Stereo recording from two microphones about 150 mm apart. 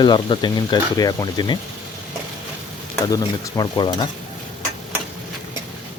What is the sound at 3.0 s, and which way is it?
Speech, 25° left (ahead or behind).